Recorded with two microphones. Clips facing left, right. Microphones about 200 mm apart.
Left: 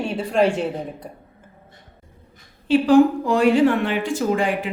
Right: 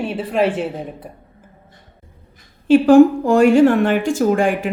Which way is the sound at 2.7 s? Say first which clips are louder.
Right 5 dB; 45° right (ahead or behind).